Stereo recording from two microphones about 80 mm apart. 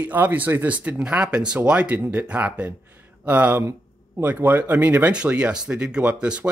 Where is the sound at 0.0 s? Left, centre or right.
Right.